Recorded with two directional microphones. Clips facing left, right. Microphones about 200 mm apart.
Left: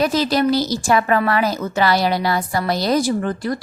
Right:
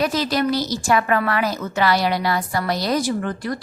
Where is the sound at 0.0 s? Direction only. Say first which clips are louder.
Left 3 dB; 30° left (ahead or behind).